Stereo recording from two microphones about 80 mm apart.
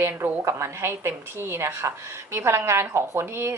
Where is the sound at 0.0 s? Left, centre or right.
Right.